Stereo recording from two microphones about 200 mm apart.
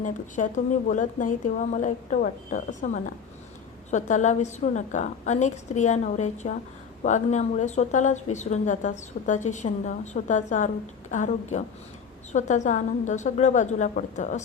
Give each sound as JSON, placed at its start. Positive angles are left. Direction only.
{"t": 0.0, "sound": "a woman's voice", "side_deg": 40}